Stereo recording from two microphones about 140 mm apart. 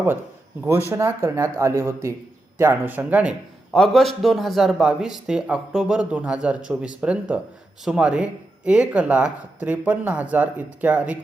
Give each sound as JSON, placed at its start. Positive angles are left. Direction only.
{"t": 0.9, "sound": "speech", "side_deg": -15}
{"t": 3.7, "sound": "a man's voice", "side_deg": 5}